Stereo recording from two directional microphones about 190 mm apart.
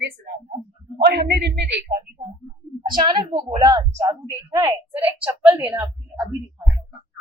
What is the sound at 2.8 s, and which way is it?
A child's voice, 25° right (ahead or behind).